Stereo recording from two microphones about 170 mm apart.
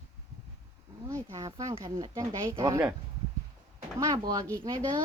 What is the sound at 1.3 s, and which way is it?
Speech, 20° right (ahead or behind).